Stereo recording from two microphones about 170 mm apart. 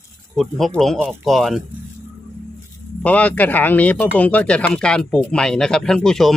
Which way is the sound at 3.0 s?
10° left (ahead or behind).